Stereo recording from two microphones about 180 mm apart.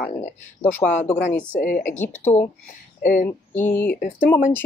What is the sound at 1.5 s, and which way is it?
Speech, 45° left (ahead or behind).